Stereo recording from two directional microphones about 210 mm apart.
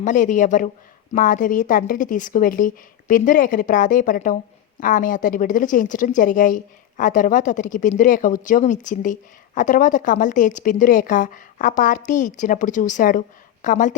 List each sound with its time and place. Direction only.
0.0 s a woman's voice: 35° left (ahead or behind)